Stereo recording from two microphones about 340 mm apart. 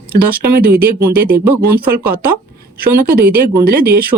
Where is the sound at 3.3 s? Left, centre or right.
Right.